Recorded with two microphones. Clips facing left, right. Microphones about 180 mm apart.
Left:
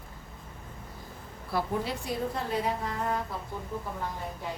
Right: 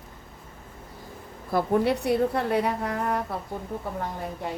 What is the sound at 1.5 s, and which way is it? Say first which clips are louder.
A woman's voice: right 8 dB; 60° right (ahead or behind).